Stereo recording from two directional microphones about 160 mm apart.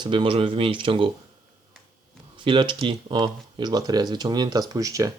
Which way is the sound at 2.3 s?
30° right (ahead or behind).